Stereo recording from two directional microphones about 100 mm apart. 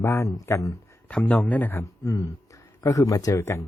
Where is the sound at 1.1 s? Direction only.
15° left (ahead or behind).